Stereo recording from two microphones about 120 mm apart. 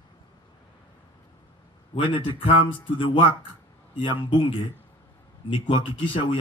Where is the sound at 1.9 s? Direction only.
45° left (ahead or behind).